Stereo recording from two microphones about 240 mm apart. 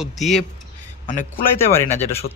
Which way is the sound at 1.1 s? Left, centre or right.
Left.